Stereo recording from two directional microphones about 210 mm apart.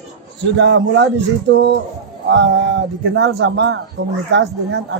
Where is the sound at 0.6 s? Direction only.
60° right (ahead or behind).